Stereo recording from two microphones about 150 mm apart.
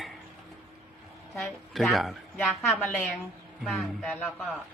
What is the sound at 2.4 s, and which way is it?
Speech, 15° left (ahead or behind).